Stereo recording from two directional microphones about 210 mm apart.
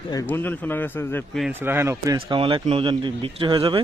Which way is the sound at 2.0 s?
25° right (ahead or behind).